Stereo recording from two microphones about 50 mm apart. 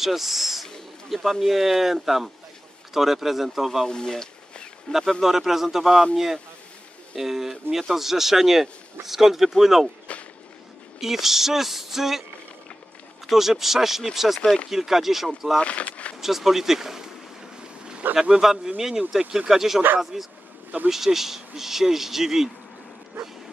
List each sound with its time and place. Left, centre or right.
0.0 s speech: centre
3.8 s a sound: centre
5.2 s speech: centre
11.0 s speech: centre
13.3 s speech: centre
15.6 s speech: left
16.2 s speech: centre
18.3 s speech: centre